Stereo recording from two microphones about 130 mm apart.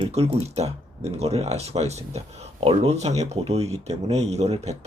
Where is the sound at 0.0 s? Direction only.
50° right (ahead or behind).